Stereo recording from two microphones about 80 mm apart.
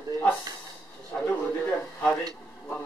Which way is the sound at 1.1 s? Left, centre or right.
Left.